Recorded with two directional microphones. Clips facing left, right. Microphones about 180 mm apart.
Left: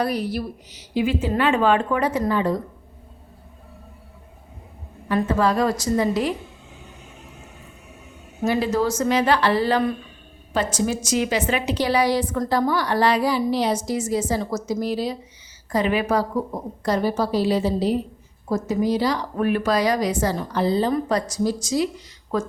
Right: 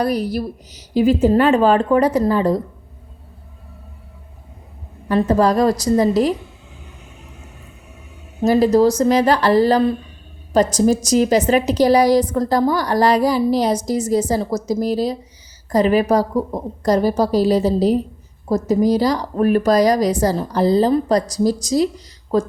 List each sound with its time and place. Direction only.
0.0 s a woman's voice: 40° right (ahead or behind)
5.0 s a woman's voice: 40° right (ahead or behind)
8.4 s a woman's voice: 40° right (ahead or behind)